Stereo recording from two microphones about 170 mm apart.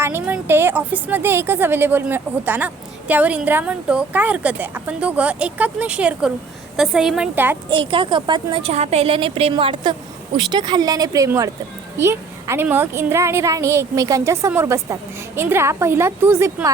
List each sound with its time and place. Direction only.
0.0 s a woman's voice: 15° right (ahead or behind)
7.7 s a woman's voice: 30° right (ahead or behind); by 16.7 s 15° right (ahead or behind)